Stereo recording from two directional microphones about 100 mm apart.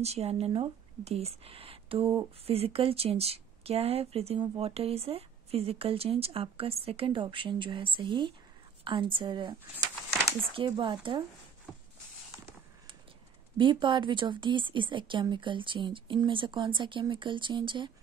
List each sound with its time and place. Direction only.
0.0 s speech: 90° right; by 11.2 s 55° right (ahead or behind)
13.6 s speech: 55° right (ahead or behind)